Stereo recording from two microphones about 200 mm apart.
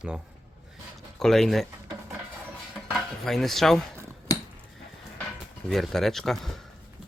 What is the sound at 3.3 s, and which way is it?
Speech, centre (ahead or behind).